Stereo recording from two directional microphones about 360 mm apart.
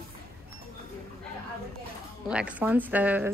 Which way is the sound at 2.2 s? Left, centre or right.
Centre.